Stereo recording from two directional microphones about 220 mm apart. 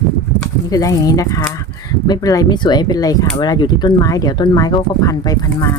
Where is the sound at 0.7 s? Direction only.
15° left (ahead or behind).